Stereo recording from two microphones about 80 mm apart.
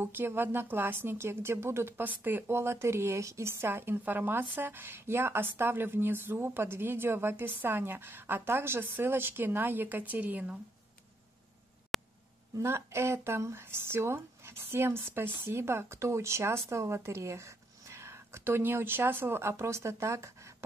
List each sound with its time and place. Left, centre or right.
0.0 s speech: right
11.9 s a sound: centre
12.5 s speech: right